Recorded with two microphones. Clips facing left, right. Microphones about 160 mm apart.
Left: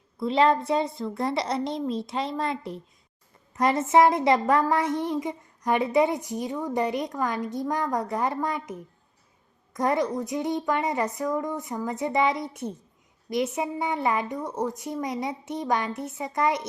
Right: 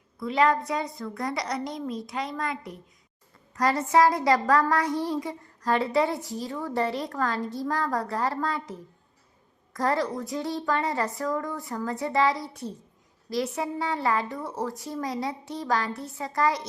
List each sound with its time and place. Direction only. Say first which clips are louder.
0.2 s a child's voice: left 2 dB; 25° left (ahead or behind)